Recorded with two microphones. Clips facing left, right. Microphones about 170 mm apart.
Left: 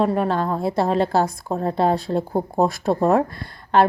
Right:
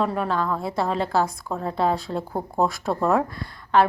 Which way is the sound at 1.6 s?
40° left (ahead or behind).